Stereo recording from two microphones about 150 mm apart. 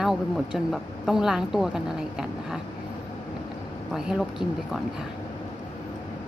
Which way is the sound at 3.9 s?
5° right (ahead or behind).